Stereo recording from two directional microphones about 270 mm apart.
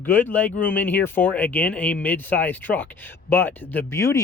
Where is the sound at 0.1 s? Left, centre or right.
Centre.